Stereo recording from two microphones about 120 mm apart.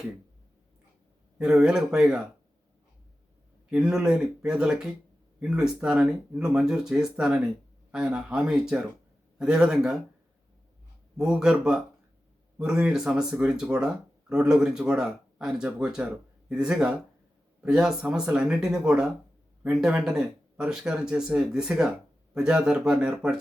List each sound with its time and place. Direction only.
1.4 s speech: 5° right (ahead or behind)
3.7 s speech: 5° right (ahead or behind)
11.2 s speech: 5° right (ahead or behind)